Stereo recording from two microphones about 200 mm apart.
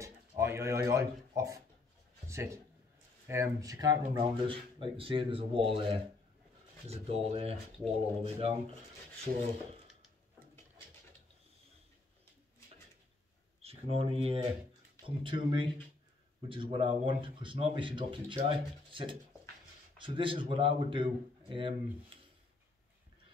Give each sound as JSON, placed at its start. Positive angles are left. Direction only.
{"t": 0.0, "sound": "a sound", "side_deg": -15}
{"t": 2.2, "sound": "a man's voice", "side_deg": -15}
{"t": 13.6, "sound": "speech", "side_deg": -30}